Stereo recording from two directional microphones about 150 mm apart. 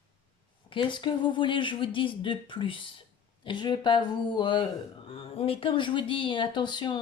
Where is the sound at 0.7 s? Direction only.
35° left (ahead or behind).